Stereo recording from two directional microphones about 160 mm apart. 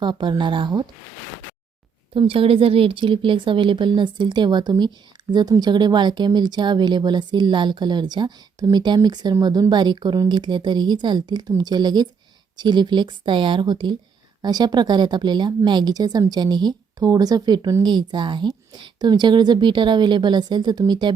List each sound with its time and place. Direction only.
0.0 s speech: 30° right (ahead or behind)
2.1 s speech: 35° right (ahead or behind)